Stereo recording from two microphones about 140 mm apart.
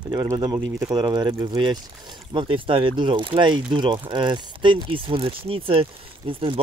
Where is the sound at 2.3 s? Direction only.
40° right (ahead or behind).